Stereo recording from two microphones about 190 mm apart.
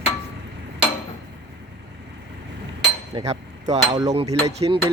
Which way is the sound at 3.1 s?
25° right (ahead or behind).